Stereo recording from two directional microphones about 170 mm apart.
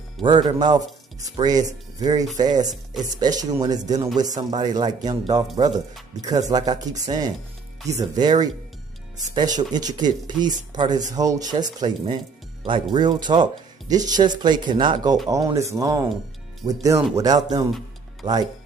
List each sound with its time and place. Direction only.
0.2 s speech: 25° right (ahead or behind)
2.7 s speech: centre (ahead or behind)
3.2 s speech: 25° right (ahead or behind)
6.5 s speech: 25° right (ahead or behind)